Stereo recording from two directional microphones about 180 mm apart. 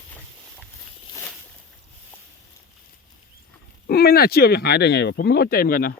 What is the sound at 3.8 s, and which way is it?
Speech, 60° left (ahead or behind).